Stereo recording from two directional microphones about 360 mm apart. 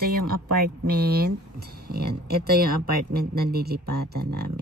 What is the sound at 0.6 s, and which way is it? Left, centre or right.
Speech, right.